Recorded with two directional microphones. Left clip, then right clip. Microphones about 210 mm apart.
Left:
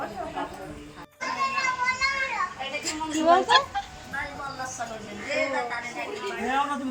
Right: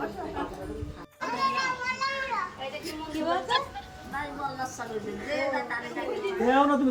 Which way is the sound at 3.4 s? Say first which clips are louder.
Left 7 dB; 5° right (ahead or behind).